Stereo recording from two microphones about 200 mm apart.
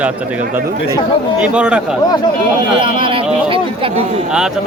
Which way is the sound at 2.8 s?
25° right (ahead or behind).